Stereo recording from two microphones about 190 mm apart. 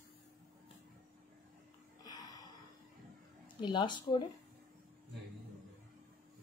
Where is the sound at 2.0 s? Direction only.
20° left (ahead or behind).